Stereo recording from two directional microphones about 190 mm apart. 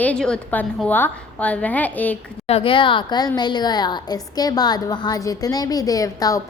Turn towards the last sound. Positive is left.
turn(degrees=20)  # may be behind; listen again after turning